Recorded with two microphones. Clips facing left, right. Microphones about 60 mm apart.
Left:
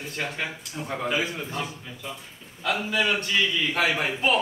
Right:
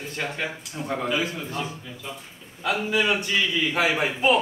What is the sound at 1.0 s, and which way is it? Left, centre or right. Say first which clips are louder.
Speech: left 1 dB; left.